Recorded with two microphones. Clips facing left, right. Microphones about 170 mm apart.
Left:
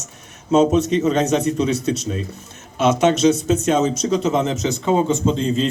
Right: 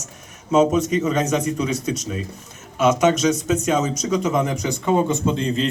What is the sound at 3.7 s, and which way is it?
A man's voice, 25° left (ahead or behind).